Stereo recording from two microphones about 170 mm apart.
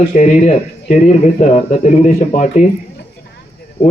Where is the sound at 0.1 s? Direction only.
45° left (ahead or behind).